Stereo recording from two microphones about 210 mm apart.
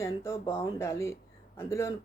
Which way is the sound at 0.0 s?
15° left (ahead or behind).